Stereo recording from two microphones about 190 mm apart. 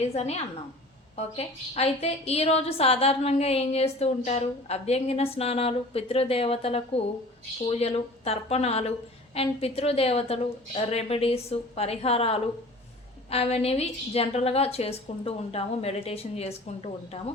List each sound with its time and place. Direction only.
0.0 s a woman's voice: 35° left (ahead or behind)